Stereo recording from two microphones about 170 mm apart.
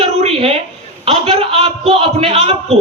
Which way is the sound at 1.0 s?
35° right (ahead or behind).